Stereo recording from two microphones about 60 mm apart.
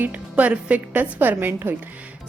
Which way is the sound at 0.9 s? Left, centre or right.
Right.